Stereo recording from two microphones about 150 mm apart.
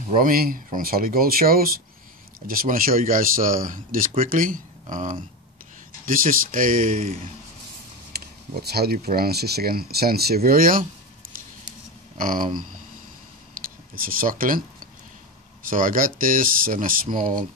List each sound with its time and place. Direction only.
0.2 s speech: 70° right (ahead or behind)
8.1 s speech: 90° right; by 10.8 s 75° right (ahead or behind)
12.2 s speech: 65° right (ahead or behind)
13.9 s speech: 70° right (ahead or behind)
15.7 s speech: 65° right (ahead or behind)